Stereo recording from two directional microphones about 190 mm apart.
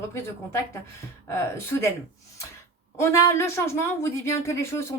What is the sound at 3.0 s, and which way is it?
Speech, 15° left (ahead or behind).